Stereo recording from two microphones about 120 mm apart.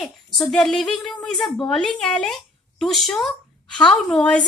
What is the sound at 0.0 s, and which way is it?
A woman's voice, centre (ahead or behind).